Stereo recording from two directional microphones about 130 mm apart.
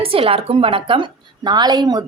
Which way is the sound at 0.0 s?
45° right (ahead or behind).